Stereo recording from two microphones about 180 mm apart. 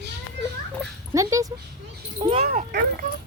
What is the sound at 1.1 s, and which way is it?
Speech, 20° right (ahead or behind).